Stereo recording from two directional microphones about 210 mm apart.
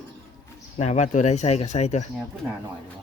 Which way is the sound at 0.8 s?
35° left (ahead or behind).